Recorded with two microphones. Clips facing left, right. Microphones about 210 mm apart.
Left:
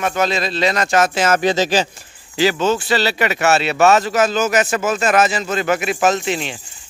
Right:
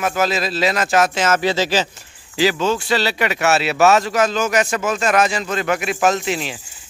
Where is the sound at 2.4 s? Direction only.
Centre (ahead or behind).